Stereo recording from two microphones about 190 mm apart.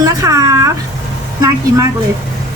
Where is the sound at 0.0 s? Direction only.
15° right (ahead or behind).